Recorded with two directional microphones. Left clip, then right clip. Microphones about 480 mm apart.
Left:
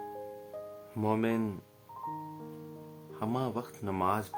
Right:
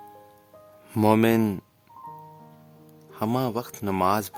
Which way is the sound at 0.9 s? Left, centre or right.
Right.